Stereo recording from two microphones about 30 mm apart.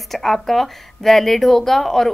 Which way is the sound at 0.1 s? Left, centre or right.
Centre.